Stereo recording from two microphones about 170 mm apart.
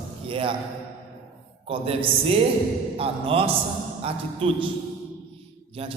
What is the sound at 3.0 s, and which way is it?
A man's voice, 35° right (ahead or behind).